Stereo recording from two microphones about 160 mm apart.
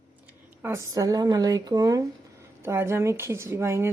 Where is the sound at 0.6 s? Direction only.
20° right (ahead or behind).